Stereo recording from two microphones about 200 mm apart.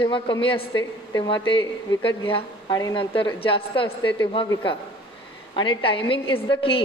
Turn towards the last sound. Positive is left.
turn(degrees=25)  # may be behind; listen again after turning